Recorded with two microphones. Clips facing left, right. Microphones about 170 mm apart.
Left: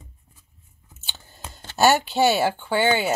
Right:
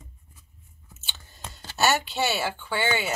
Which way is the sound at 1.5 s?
35° left (ahead or behind).